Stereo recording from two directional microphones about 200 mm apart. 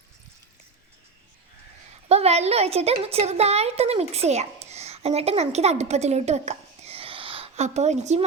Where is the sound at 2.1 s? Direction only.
30° right (ahead or behind).